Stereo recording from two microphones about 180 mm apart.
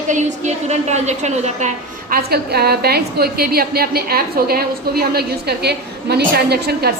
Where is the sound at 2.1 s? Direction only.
60° right (ahead or behind).